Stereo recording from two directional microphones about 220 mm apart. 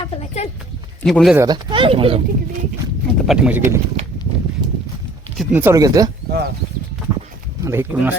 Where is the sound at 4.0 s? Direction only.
30° right (ahead or behind).